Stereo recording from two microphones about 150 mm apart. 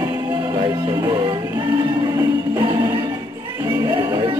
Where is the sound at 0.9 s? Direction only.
25° right (ahead or behind).